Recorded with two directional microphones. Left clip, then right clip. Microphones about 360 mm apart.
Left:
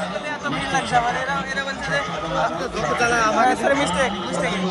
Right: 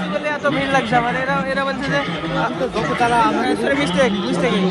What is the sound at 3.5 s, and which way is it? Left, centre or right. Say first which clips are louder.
Speech: even; left.